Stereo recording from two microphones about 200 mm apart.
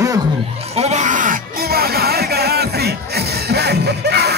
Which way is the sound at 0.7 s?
35° right (ahead or behind).